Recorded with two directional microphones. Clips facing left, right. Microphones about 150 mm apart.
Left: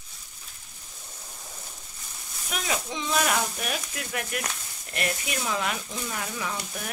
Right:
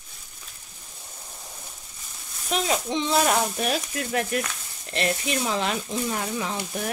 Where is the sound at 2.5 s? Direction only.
25° right (ahead or behind).